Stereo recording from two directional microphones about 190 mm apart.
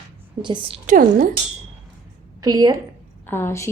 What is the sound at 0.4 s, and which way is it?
Speech, 25° right (ahead or behind).